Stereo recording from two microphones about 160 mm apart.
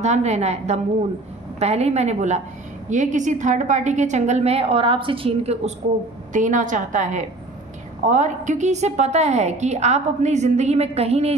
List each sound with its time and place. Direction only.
0.0 s a woman's voice: 45° right (ahead or behind)
6.3 s a woman's voice: 50° right (ahead or behind)